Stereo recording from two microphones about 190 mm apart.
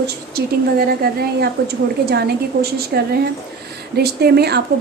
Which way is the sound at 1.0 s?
50° right (ahead or behind).